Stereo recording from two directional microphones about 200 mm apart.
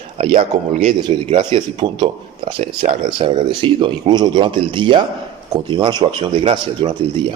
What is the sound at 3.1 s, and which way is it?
A man's voice, 20° right (ahead or behind).